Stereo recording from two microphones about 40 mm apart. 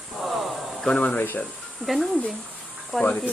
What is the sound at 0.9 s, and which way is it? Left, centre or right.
Speech, left.